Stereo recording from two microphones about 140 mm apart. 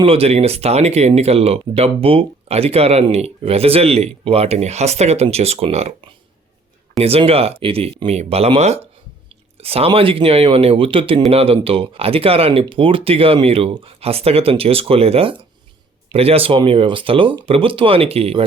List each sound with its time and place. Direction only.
0.0 s speech: 45° right (ahead or behind)